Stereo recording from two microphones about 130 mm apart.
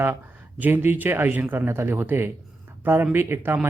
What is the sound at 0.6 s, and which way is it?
A man's voice, 15° right (ahead or behind).